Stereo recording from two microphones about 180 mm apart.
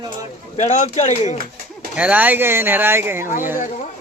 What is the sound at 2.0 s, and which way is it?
Speech, 10° right (ahead or behind).